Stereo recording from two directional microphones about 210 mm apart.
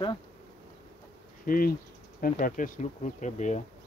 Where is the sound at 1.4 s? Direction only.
40° left (ahead or behind).